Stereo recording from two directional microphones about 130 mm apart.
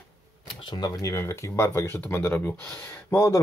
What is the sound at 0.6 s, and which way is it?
Speech, 35° left (ahead or behind).